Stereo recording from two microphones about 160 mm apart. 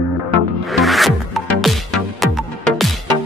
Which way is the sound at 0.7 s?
Centre (ahead or behind).